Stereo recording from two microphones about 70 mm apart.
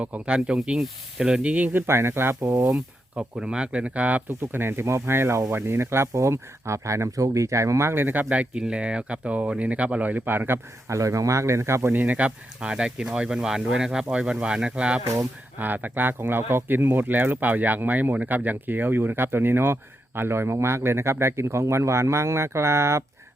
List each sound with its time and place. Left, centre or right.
0.0 s speech: centre
1.9 s speech: right
2.4 s speech: right
3.3 s speech: centre
4.4 s speech: right
10.8 s speech: right
11.9 s speech: right
15.0 s speech: right
15.5 s speech: right